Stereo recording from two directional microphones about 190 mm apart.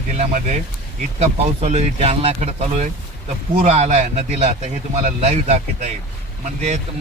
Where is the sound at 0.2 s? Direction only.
40° right (ahead or behind).